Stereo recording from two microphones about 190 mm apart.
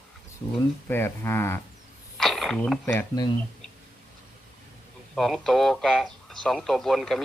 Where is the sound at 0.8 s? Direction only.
10° left (ahead or behind).